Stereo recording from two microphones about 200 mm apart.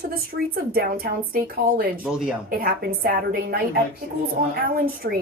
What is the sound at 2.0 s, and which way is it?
Speech, 5° right (ahead or behind).